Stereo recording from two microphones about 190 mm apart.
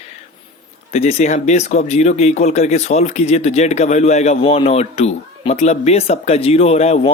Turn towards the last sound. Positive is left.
turn(degrees=35)  # may be behind; listen again after turning